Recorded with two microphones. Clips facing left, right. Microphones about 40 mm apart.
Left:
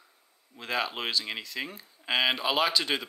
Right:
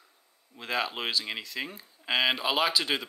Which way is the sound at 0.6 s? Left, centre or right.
Centre.